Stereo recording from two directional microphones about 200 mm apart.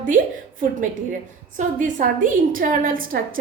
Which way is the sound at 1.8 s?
40° right (ahead or behind).